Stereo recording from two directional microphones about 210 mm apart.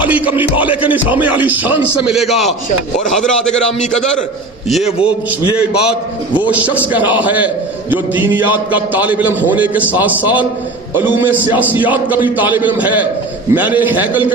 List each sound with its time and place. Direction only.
0.0 s a man's voice: 5° right (ahead or behind)
4.9 s a man's voice: 25° left (ahead or behind)
6.5 s a man's voice: 5° right (ahead or behind)